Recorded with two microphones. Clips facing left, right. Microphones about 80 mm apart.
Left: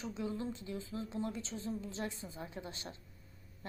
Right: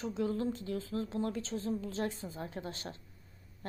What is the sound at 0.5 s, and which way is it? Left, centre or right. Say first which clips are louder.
A woman's voice: right 5 dB; right.